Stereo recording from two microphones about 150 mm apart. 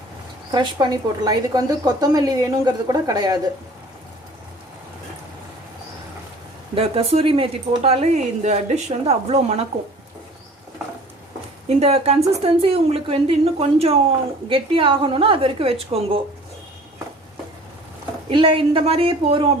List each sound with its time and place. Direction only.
0.5 s a woman's voice: 30° right (ahead or behind)
6.7 s speech: 40° right (ahead or behind)
11.7 s a woman's voice: 45° right (ahead or behind)
18.3 s a woman's voice: 35° right (ahead or behind)